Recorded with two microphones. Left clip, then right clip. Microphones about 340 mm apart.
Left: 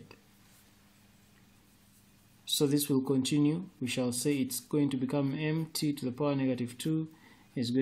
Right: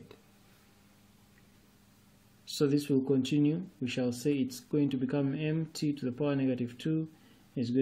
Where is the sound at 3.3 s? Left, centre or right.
Left.